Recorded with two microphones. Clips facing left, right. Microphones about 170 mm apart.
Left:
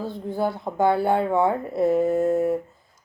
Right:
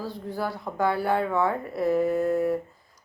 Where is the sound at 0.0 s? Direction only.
25° left (ahead or behind).